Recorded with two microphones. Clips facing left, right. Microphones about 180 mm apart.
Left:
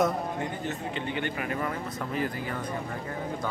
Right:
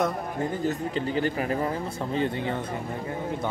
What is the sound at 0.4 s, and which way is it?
Speech, 35° right (ahead or behind).